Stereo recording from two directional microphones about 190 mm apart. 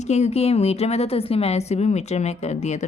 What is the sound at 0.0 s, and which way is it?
A woman's voice, 35° left (ahead or behind).